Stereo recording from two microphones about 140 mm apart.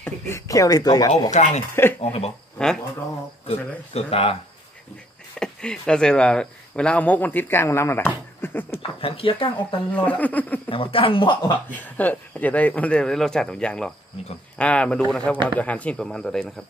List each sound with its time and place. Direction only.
0.0 s speech: 20° left (ahead or behind)
1.3 s speech: 55° left (ahead or behind)
2.6 s speech: 5° left (ahead or behind)
3.4 s speech: 45° left (ahead or behind)
5.4 s speech: 5° left (ahead or behind)
8.4 s a sound: 15° left (ahead or behind)
8.7 s speech: 40° left (ahead or behind)
9.9 s speech: 10° left (ahead or behind)
10.7 s speech: 40° left (ahead or behind)
11.7 s speech: 10° left (ahead or behind)